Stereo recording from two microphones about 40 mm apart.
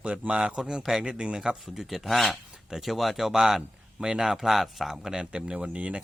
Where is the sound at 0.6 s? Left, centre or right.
Centre.